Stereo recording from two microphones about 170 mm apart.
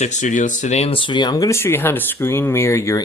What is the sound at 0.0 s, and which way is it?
Speech, 45° left (ahead or behind).